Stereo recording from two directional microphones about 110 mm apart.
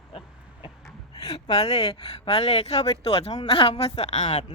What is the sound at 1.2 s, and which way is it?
Speech, 65° left (ahead or behind).